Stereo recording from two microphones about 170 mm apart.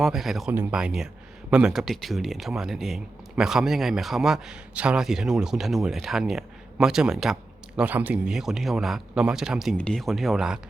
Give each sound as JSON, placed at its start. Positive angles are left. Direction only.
{"t": 0.0, "sound": "speech", "side_deg": 0}